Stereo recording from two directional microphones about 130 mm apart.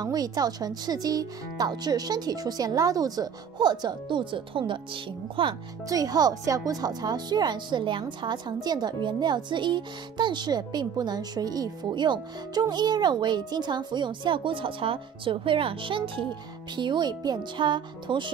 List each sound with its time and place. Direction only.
0.0 s speech: 30° right (ahead or behind)
5.9 s speech: 30° right (ahead or behind)